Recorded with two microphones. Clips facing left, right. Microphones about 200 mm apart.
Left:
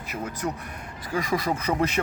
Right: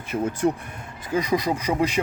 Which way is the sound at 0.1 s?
30° right (ahead or behind).